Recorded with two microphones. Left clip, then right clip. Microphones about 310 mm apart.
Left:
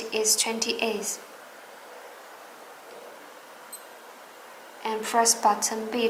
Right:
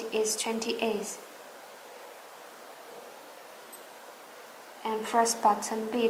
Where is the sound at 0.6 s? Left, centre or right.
Right.